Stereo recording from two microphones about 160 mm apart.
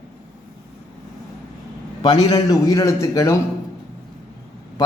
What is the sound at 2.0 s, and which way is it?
A man's voice, 30° left (ahead or behind).